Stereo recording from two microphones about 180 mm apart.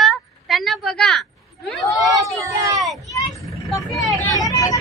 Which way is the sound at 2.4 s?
20° right (ahead or behind).